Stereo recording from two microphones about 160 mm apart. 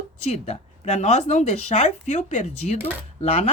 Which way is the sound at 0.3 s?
45° left (ahead or behind).